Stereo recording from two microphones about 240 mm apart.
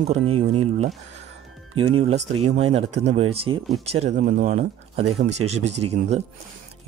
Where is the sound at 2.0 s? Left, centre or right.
Right.